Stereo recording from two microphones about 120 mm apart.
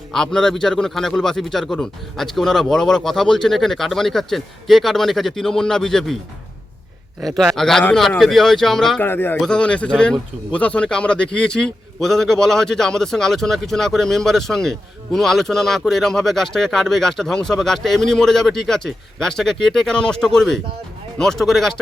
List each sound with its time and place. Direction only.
0.1 s speech: 5° left (ahead or behind)
7.2 s speech: centre (ahead or behind)
9.0 s speech: 15° left (ahead or behind)